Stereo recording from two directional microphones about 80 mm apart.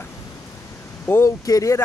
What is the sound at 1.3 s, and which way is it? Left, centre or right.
Speech, left.